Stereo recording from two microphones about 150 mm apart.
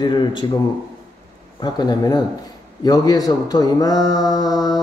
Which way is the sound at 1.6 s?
30° left (ahead or behind).